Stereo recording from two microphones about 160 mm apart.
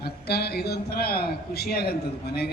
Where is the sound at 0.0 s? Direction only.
85° left.